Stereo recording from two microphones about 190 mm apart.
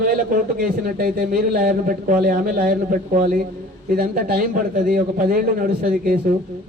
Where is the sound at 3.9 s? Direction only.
55° right (ahead or behind).